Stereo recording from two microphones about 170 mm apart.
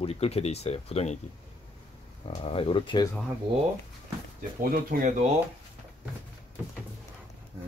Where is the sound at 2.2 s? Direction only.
35° left (ahead or behind).